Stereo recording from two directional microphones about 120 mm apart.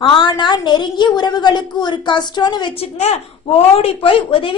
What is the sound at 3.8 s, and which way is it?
Speech, 50° left (ahead or behind).